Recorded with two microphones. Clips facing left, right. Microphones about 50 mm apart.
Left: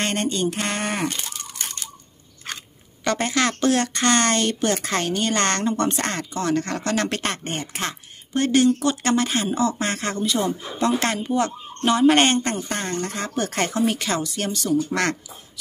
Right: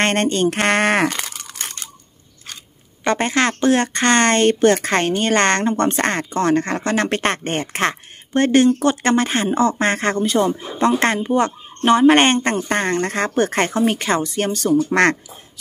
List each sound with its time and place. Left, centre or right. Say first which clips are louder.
0.0 s speech: right 6 dB; right
1.6 s a sound: right 3 dB; right
3.0 s speech: right 4 dB; right
8.3 s speech: right 4 dB; right
13.3 s speech: right 6 dB; right